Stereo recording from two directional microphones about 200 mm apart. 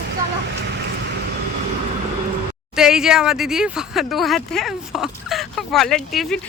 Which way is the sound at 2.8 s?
5° right (ahead or behind).